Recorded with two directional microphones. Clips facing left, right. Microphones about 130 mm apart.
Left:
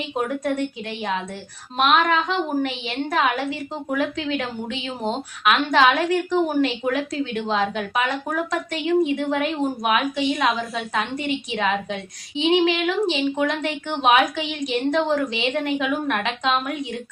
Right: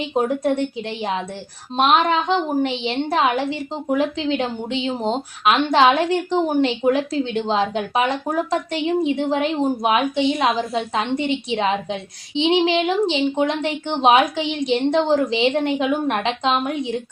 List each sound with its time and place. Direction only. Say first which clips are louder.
0.0 s a woman's voice: right 5 dB; 25° right (ahead or behind)